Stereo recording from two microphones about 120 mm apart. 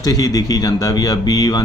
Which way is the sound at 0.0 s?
30° left (ahead or behind).